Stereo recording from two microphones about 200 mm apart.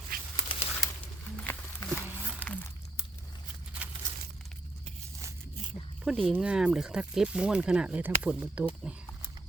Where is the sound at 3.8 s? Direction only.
5° right (ahead or behind).